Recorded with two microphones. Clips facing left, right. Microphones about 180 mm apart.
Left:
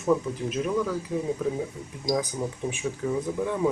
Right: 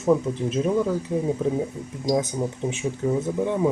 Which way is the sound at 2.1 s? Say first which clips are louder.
Right 5 dB; 25° right (ahead or behind).